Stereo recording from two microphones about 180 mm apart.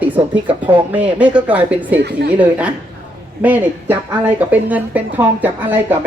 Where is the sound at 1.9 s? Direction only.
70° right (ahead or behind).